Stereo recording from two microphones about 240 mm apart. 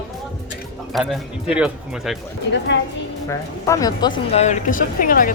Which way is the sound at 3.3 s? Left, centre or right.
Centre.